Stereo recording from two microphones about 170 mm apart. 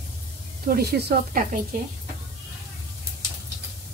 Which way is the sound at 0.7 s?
70° right (ahead or behind).